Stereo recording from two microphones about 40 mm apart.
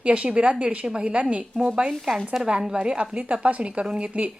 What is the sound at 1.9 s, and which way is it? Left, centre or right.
Speech, centre.